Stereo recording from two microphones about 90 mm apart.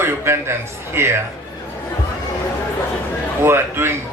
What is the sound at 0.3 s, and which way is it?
Speech, 30° right (ahead or behind).